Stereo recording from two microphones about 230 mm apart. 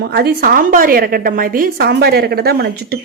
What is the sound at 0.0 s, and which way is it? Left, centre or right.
A woman's voice, right.